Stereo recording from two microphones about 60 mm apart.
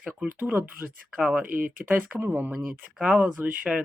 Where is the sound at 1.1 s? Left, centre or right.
Right.